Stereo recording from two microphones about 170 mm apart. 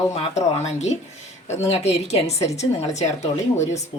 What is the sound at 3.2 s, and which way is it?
Speech, 15° left (ahead or behind).